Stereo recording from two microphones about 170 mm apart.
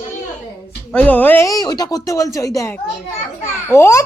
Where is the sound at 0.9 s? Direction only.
10° left (ahead or behind).